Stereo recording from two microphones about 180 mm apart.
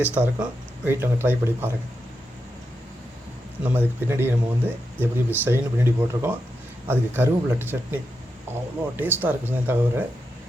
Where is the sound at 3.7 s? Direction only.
10° right (ahead or behind).